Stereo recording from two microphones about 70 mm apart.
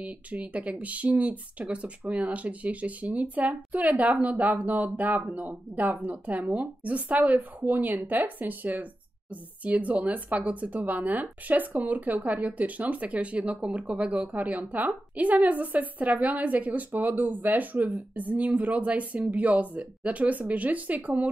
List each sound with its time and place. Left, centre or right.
0.0 s speech: right